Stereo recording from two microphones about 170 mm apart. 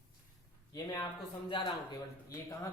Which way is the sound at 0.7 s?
20° left (ahead or behind).